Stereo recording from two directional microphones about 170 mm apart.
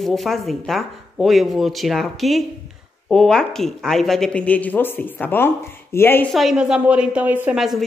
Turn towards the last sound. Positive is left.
turn(degrees=0)  # may be behind; listen again after turning